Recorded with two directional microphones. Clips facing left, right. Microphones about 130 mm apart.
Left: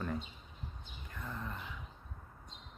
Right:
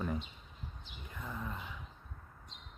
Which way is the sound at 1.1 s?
10° right (ahead or behind).